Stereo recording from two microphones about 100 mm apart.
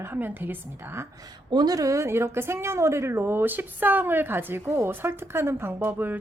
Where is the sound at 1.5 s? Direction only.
45° right (ahead or behind); by 6.2 s 20° right (ahead or behind).